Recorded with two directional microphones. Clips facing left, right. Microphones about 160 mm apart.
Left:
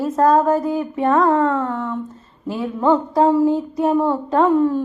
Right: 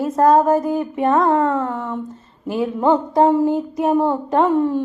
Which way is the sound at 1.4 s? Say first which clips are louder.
Even; 15° right (ahead or behind).